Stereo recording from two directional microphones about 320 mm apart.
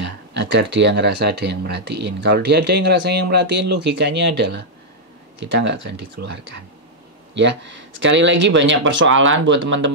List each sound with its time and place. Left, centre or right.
0.0 s speech: right